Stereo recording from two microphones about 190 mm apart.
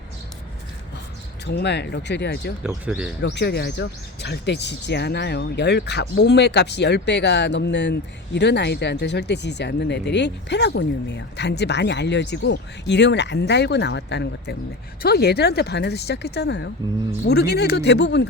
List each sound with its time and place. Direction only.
1.5 s speech: 60° left (ahead or behind)
2.6 s speech: 5° right (ahead or behind)
3.2 s speech: 65° left (ahead or behind)